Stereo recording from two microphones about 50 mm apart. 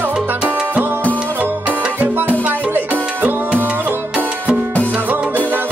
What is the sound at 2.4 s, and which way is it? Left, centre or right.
Music, right.